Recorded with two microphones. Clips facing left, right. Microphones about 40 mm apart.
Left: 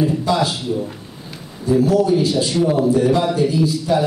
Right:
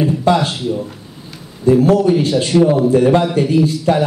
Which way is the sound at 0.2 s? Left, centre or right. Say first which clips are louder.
Right 4 dB; right.